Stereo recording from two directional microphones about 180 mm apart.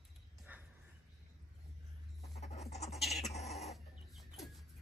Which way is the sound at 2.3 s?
40° left (ahead or behind).